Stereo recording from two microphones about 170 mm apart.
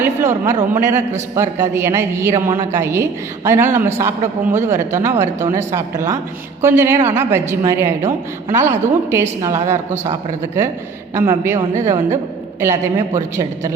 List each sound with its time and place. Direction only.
0.0 s a woman's voice: 15° right (ahead or behind)
11.7 s a woman's voice: 45° right (ahead or behind)
12.5 s a woman's voice: 15° right (ahead or behind)